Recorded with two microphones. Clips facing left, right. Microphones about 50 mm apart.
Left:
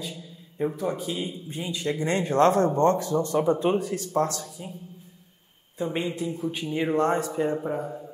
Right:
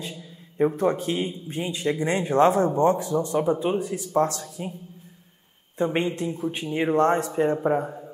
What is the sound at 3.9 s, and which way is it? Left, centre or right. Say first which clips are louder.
Speech: right 2 dB; right.